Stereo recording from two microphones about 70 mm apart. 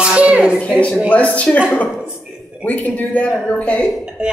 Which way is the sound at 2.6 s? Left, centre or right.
Left.